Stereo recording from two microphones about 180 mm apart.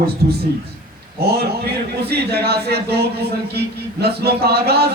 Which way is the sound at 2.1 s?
65° right (ahead or behind).